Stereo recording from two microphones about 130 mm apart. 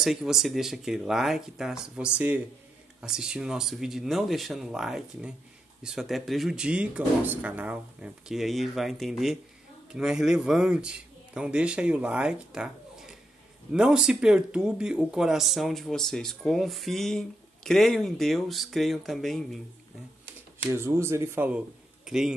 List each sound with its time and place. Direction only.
0.0 s speech: 5° right (ahead or behind)
20.7 s speech: 20° right (ahead or behind); by 22.3 s 5° right (ahead or behind)